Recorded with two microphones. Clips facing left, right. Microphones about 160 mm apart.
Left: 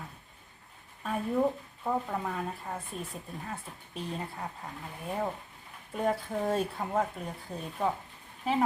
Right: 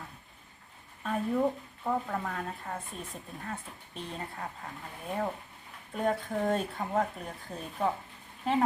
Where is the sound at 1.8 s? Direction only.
5° left (ahead or behind).